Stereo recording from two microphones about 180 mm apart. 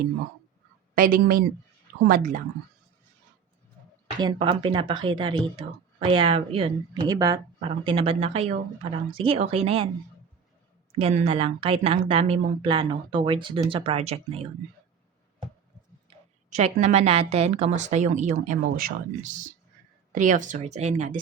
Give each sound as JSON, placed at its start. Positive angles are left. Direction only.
{"t": 0.9, "sound": "speech", "side_deg": -50}
{"t": 4.2, "sound": "speech", "side_deg": -25}
{"t": 7.0, "sound": "speech", "side_deg": -20}
{"t": 7.9, "sound": "a woman's voice", "side_deg": -30}
{"t": 10.9, "sound": "a woman's voice", "side_deg": -35}
{"t": 16.0, "sound": "a woman's voice", "side_deg": -40}